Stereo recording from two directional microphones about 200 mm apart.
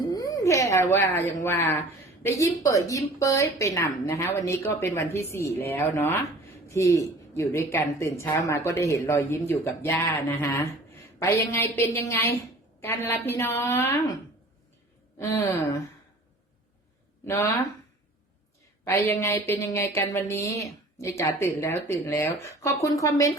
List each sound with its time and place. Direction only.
0.0 s a woman's voice: 20° left (ahead or behind)
15.2 s a woman's voice: 10° left (ahead or behind)
17.2 s a woman's voice: 15° left (ahead or behind)
18.9 s a woman's voice: 10° left (ahead or behind)